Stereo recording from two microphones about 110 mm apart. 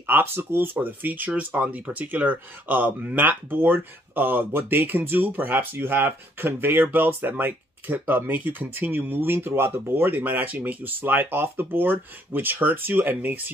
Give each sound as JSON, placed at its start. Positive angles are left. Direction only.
{"t": 0.0, "sound": "speech", "side_deg": -20}